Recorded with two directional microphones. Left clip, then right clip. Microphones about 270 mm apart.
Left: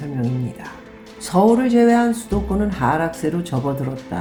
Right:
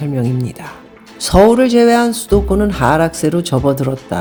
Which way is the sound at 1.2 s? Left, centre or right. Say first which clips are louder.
Right 7 dB; right.